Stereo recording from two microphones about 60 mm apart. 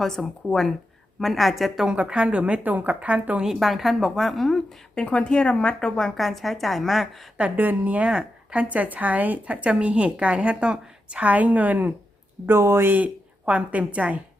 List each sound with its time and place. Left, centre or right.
0.0 s a woman's voice: centre
1.9 s speech: centre
3.4 s a woman's voice: centre
5.0 s a woman's voice: centre
7.5 s speech: right
12.5 s speech: right
12.9 s a woman's voice: right